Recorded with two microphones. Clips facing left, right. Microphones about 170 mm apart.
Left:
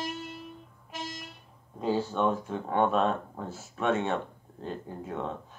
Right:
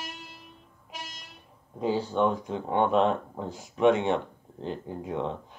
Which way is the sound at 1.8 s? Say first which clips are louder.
Right 2 dB; 15° right (ahead or behind).